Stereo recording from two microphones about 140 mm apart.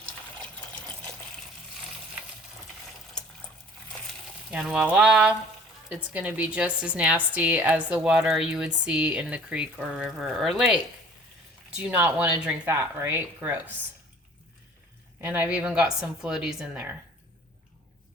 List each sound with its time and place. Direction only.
4.5 s a woman's voice: 5° right (ahead or behind)
11.8 s a woman's voice: 10° right (ahead or behind)
15.2 s a woman's voice: 15° right (ahead or behind)